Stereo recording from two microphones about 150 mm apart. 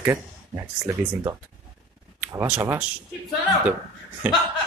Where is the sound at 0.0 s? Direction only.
20° right (ahead or behind).